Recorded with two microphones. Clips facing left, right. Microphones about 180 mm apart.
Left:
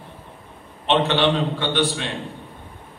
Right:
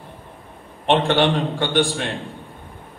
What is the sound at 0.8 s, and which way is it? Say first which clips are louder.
A man's voice: right 2 dB; 45° right (ahead or behind).